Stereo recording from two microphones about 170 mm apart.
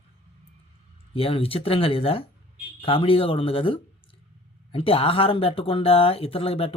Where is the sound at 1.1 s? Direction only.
35° left (ahead or behind).